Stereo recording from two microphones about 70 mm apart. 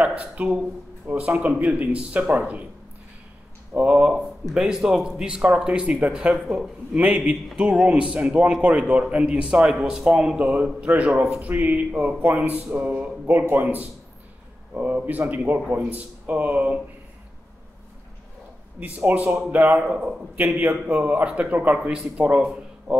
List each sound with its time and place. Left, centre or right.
0.0 s a man's voice: centre
3.7 s a man's voice: centre
19.0 s a man's voice: right